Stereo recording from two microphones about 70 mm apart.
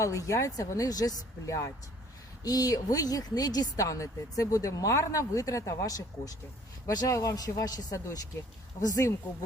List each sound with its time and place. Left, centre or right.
0.0 s speech: left
2.4 s a woman's voice: left
7.9 s a woman's voice: left